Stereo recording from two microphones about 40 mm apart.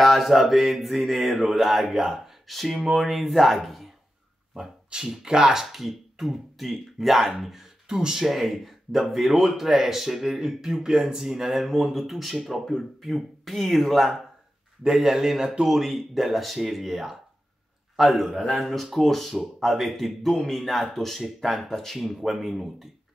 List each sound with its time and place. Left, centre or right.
0.0 s speech: centre
2.8 s speech: centre
3.1 s speech: centre
4.6 s speech: centre
7.9 s speech: centre
8.2 s speech: centre
9.7 s speech: centre
11.6 s speech: centre
15.0 s speech: centre